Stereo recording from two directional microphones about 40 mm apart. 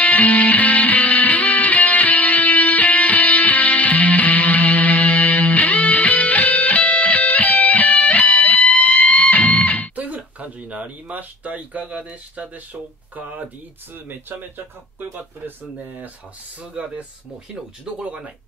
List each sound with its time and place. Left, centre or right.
0.0 s music: left
9.9 s a sound: right
11.8 s speech: right
13.9 s speech: right
16.8 s speech: right
18.0 s speech: right